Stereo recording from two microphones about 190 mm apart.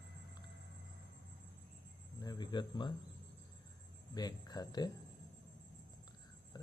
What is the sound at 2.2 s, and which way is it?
Cricket, 20° left (ahead or behind).